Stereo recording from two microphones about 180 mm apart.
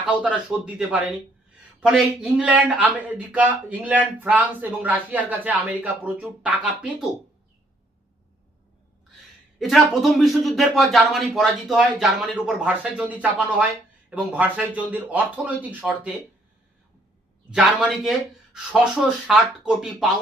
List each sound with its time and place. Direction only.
0.1 s speech: 5° right (ahead or behind)
9.6 s speech: centre (ahead or behind)
17.5 s speech: 5° right (ahead or behind)